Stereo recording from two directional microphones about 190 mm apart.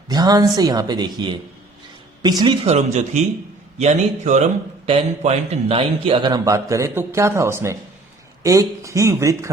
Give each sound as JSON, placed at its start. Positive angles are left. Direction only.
{"t": 0.1, "sound": "speech", "side_deg": -20}
{"t": 2.6, "sound": "a man's voice", "side_deg": -35}